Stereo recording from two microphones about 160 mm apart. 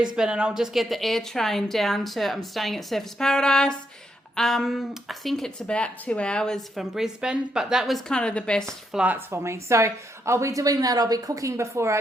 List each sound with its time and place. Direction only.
0.2 s speech: 5° right (ahead or behind)
8.9 s speech: 10° right (ahead or behind)